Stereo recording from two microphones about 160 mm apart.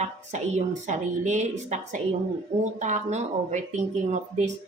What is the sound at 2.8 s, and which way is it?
A woman's voice, 45° right (ahead or behind).